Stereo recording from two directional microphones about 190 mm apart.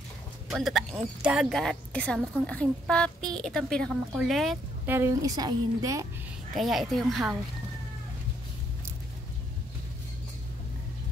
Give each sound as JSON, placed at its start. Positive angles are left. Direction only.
{"t": 0.6, "sound": "a woman's voice", "side_deg": 0}
{"t": 4.8, "sound": "a woman's voice", "side_deg": -15}
{"t": 6.5, "sound": "a woman's voice", "side_deg": 0}